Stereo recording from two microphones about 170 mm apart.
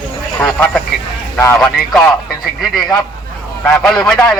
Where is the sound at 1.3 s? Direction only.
15° left (ahead or behind).